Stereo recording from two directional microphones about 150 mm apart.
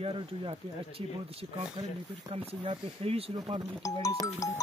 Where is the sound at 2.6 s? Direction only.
40° right (ahead or behind).